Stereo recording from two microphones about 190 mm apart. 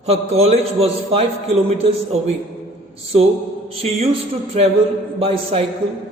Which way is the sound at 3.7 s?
30° right (ahead or behind).